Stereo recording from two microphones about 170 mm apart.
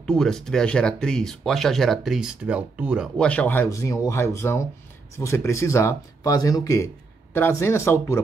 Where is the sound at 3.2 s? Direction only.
10° left (ahead or behind).